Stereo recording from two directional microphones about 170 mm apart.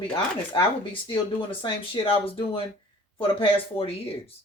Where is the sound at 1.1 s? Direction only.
30° left (ahead or behind).